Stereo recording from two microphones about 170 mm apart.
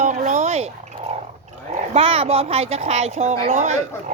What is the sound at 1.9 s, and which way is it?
A woman's voice, 35° right (ahead or behind).